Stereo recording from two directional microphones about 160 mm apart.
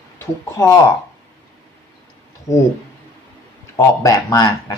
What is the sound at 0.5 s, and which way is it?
Speech, 20° left (ahead or behind).